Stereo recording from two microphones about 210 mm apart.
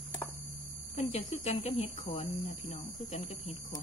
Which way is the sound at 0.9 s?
35° left (ahead or behind).